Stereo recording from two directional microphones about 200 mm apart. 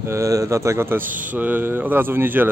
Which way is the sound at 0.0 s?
15° right (ahead or behind).